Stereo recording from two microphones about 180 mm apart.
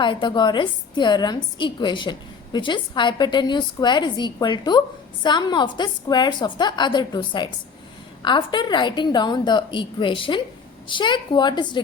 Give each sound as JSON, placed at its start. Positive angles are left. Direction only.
{"t": 0.0, "sound": "a woman's voice", "side_deg": 25}